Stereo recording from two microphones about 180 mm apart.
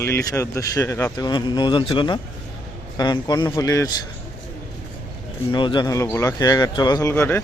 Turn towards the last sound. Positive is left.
turn(degrees=10)  # may be behind; listen again after turning